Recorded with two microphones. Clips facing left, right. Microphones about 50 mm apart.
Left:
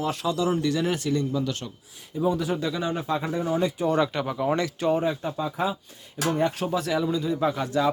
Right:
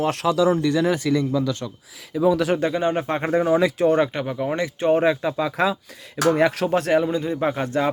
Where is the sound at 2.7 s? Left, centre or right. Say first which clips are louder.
Right 5 dB; right.